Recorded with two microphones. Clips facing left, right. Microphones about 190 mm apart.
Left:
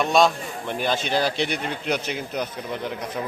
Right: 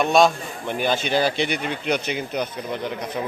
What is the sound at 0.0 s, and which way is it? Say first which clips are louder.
Speech: right 2 dB; centre (ahead or behind).